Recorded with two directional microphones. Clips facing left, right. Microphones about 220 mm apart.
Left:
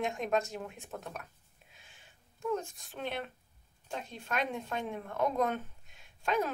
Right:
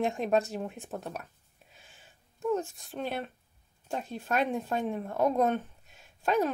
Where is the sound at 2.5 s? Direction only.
40° right (ahead or behind).